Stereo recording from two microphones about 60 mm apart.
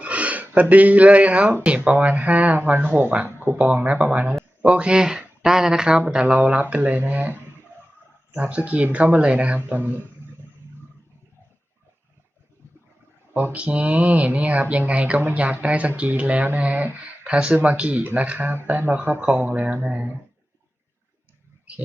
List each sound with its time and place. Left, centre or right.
0.0 s speech: right
3.3 s speech: right
8.4 s speech: right
9.6 s speech: right
13.3 s speech: right